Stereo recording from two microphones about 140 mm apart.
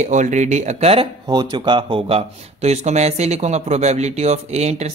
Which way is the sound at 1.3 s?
30° right (ahead or behind).